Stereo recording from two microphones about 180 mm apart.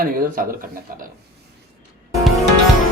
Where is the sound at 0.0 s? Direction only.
50° right (ahead or behind).